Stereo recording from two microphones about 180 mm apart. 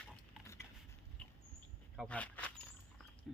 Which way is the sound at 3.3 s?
Centre (ahead or behind).